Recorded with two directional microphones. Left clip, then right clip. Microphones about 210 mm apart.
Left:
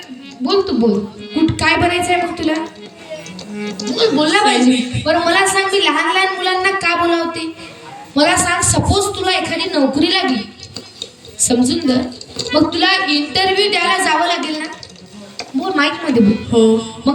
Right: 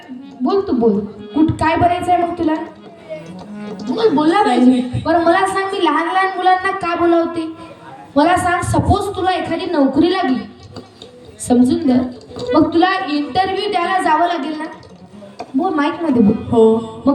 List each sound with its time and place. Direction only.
0.4 s a woman's voice: 50° right (ahead or behind)
3.6 s a woman's voice: 45° right (ahead or behind)
16.7 s music: 45° right (ahead or behind)